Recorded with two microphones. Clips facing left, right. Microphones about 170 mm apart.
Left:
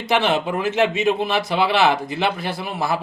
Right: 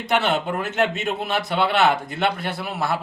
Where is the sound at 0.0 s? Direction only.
Centre (ahead or behind).